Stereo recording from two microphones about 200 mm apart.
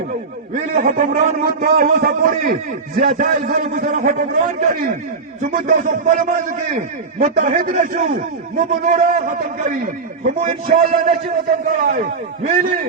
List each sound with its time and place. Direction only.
0.5 s a man's voice: 40° right (ahead or behind)